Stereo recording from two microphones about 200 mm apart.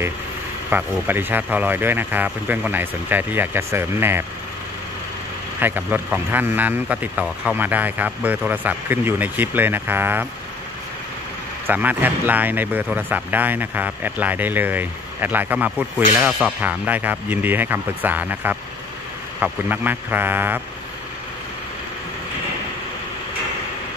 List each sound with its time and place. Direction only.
0.7 s speech: 10° right (ahead or behind)
5.6 s speech: 10° right (ahead or behind)
11.6 s speech: 10° right (ahead or behind)